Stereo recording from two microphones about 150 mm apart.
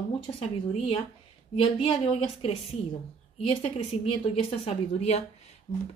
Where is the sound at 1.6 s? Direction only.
40° left (ahead or behind).